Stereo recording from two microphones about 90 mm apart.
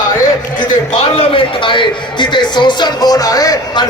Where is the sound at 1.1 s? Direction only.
70° left (ahead or behind); by 3.9 s 50° left (ahead or behind).